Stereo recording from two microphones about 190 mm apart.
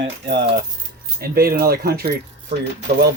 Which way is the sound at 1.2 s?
50° right (ahead or behind).